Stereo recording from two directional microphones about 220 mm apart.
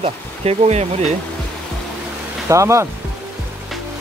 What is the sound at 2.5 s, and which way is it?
Speech, 15° right (ahead or behind).